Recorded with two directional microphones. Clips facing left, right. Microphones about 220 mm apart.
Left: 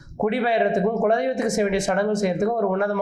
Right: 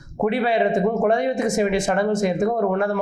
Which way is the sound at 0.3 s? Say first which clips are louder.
Right 1 dB; 20° right (ahead or behind).